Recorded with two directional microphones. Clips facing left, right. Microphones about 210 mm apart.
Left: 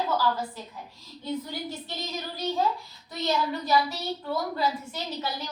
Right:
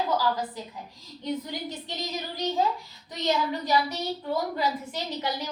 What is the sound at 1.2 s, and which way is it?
A woman's voice, 15° right (ahead or behind).